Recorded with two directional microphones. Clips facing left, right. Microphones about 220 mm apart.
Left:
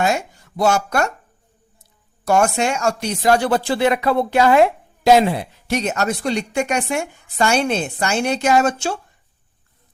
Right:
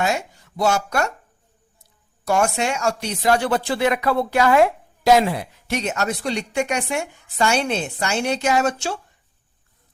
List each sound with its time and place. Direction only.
0.0 s speech: 50° left (ahead or behind)
2.2 s speech: 45° left (ahead or behind); by 5.5 s 25° left (ahead or behind)
5.6 s a woman's voice: 40° left (ahead or behind)